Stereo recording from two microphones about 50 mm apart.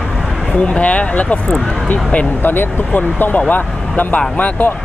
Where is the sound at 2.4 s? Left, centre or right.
Left.